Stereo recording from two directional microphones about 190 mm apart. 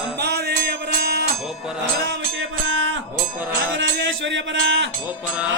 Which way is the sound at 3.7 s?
75° right (ahead or behind).